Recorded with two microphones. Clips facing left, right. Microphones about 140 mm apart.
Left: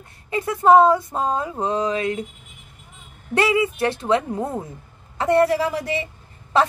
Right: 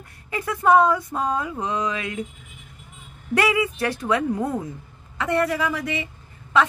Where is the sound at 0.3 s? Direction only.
30° left (ahead or behind).